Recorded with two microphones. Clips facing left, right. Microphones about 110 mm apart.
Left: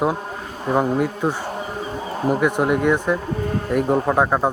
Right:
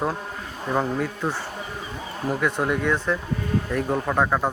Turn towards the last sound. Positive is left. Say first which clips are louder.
# left 4 dB
turn(degrees=20)  # may be behind; listen again after turning